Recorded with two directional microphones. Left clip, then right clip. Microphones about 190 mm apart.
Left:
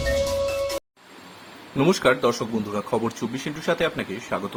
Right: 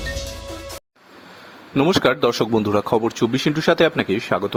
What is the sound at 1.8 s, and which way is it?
Speech, 45° right (ahead or behind).